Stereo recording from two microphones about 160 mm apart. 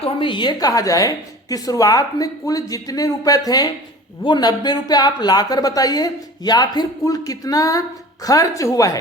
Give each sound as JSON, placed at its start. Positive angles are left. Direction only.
{"t": 0.0, "sound": "speech", "side_deg": 30}